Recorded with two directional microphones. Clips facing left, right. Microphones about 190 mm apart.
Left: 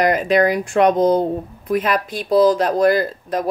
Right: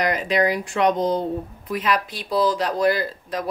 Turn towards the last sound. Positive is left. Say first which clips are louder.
# left 6 dB
turn(degrees=50)  # may be behind; listen again after turning